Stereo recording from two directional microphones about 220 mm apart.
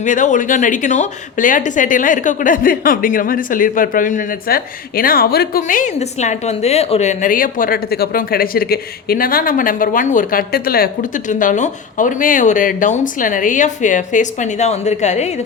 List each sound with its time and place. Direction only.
0.0 s speech: 35° left (ahead or behind)